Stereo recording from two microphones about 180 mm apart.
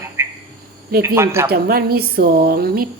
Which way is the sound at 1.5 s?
60° right (ahead or behind).